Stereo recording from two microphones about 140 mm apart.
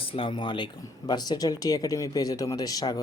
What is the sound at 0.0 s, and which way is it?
Speech, 40° left (ahead or behind).